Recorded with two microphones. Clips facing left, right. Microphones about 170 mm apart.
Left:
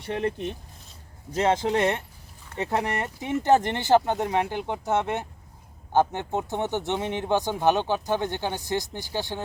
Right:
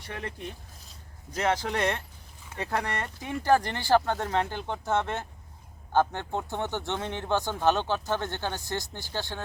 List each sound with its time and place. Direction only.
0.0 s speech: 25° left (ahead or behind)